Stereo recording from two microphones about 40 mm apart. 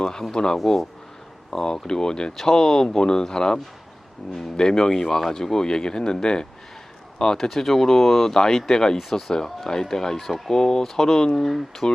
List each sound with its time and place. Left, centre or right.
0.0 s speech: centre
0.5 s speech: centre
1.5 s speech: centre
7.3 s speech: centre